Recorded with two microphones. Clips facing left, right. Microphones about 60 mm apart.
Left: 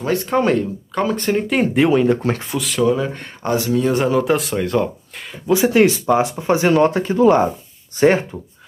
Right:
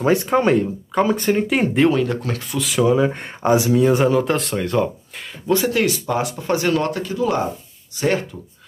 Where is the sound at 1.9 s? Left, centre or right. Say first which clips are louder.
Left 4 dB; centre.